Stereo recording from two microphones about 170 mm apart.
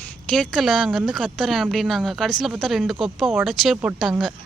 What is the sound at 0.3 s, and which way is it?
Speech, centre (ahead or behind).